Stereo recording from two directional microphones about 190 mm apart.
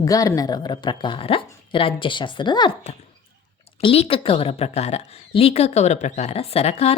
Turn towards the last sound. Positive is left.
turn(degrees=35)  # may be behind; listen again after turning